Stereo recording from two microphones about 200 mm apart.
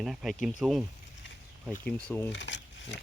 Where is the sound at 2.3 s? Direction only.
65° left (ahead or behind).